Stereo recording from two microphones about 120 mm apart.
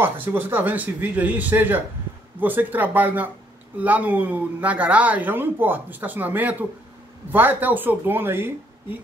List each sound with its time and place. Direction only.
0.0 s speech: 15° right (ahead or behind)